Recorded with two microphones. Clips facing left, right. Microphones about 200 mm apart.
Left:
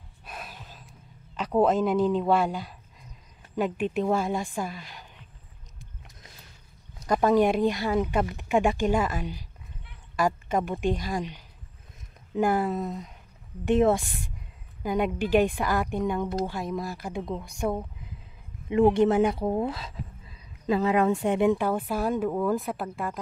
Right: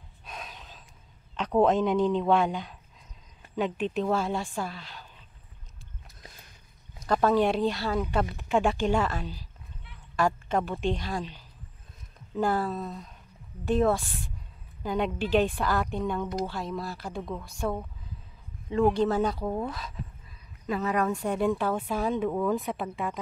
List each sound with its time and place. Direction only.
0.2 s gasp: 5° left (ahead or behind)
1.3 s speech: 5° left (ahead or behind)
7.1 s speech: 15° left (ahead or behind)